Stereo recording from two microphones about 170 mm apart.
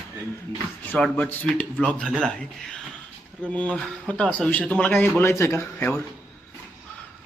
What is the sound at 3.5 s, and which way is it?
A man's voice, 5° left (ahead or behind).